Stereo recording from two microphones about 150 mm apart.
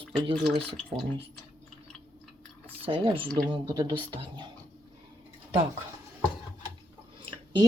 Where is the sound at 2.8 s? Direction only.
35° right (ahead or behind).